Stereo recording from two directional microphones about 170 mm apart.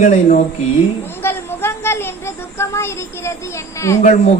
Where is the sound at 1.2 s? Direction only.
15° left (ahead or behind).